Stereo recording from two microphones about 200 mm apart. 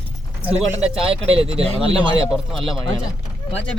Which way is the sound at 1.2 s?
30° right (ahead or behind).